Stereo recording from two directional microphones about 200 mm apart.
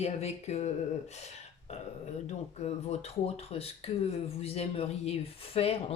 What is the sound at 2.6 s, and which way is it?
Speech, 30° left (ahead or behind).